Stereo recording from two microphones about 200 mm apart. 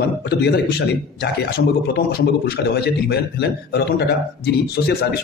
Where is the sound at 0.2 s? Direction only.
55° left (ahead or behind).